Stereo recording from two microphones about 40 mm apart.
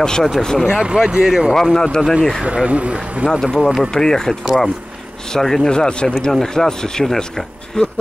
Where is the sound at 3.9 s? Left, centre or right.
Centre.